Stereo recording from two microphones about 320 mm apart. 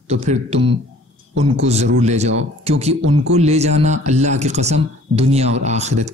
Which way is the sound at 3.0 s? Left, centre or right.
Right.